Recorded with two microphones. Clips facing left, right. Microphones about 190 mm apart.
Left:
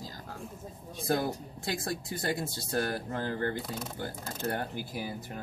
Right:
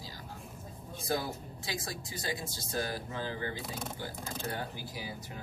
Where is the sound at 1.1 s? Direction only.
55° left (ahead or behind).